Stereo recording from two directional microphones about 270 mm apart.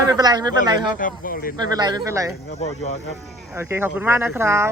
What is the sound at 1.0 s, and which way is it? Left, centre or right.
Speech, left.